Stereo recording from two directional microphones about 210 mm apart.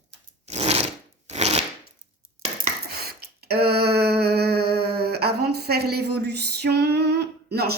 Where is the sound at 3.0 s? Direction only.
50° right (ahead or behind).